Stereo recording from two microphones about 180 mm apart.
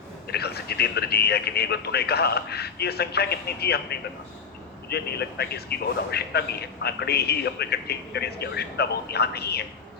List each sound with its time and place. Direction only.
0.3 s a man's voice: 65° left (ahead or behind)